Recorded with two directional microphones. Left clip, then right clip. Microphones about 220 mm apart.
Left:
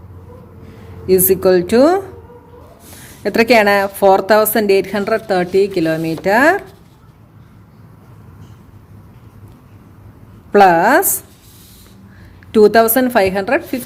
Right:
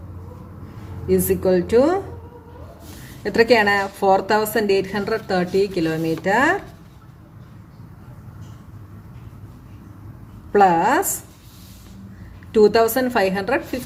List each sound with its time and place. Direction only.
1.0 s a woman's voice: 40° left (ahead or behind)
3.2 s a woman's voice: 35° left (ahead or behind)
10.5 s a woman's voice: 40° left (ahead or behind)
12.5 s a woman's voice: 35° left (ahead or behind)